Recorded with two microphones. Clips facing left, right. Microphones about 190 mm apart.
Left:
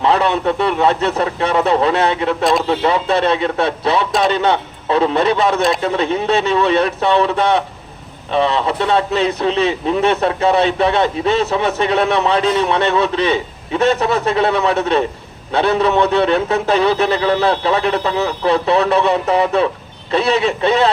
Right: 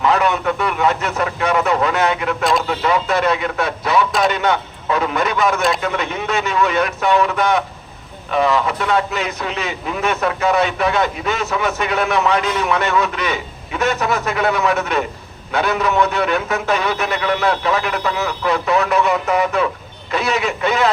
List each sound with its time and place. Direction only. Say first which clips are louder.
0.0 s a man's voice: left 2 dB; 30° left (ahead or behind)
2.4 s speech: left 2 dB; centre (ahead or behind)
2.6 s a man's voice: left 3 dB; 30° left (ahead or behind)